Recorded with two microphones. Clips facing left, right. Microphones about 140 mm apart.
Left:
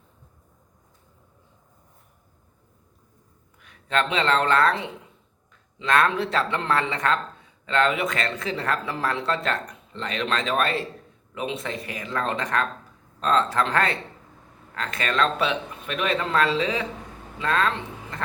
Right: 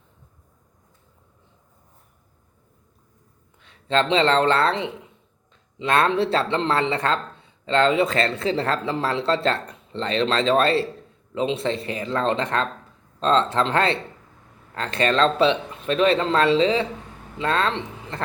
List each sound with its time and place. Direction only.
3.6 s speech: 30° right (ahead or behind)